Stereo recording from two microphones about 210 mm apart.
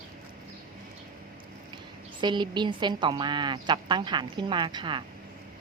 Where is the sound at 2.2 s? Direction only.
20° right (ahead or behind).